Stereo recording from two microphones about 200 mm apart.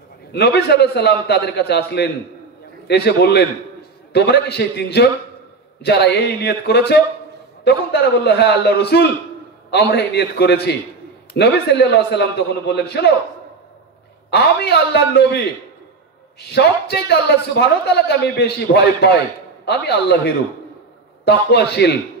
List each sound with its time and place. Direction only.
0.3 s a man's voice: 55° left (ahead or behind)
14.3 s a man's voice: 55° left (ahead or behind)
21.2 s a man's voice: 55° left (ahead or behind)